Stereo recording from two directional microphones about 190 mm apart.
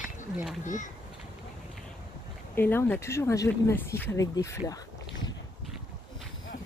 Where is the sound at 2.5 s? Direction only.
10° left (ahead or behind).